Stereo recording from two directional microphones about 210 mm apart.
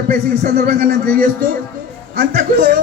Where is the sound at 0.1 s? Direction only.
50° right (ahead or behind).